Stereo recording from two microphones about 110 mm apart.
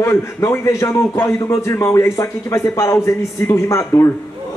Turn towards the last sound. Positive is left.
turn(degrees=25)  # may be behind; listen again after turning